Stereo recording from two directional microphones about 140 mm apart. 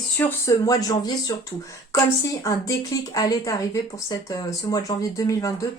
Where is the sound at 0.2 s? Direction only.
20° left (ahead or behind).